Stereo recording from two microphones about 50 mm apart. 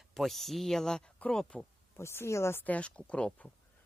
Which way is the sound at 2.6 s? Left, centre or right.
Left.